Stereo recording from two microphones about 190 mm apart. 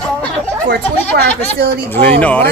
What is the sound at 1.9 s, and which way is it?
Speech, 10° left (ahead or behind).